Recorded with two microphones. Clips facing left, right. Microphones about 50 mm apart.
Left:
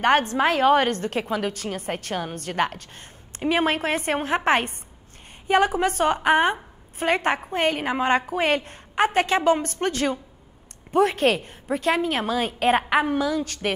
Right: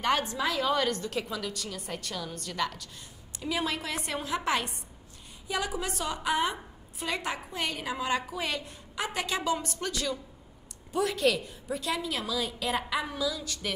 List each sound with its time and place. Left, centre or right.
0.0 s a woman's voice: left